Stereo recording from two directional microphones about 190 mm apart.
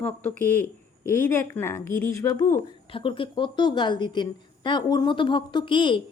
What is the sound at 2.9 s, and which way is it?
Speech, 25° left (ahead or behind).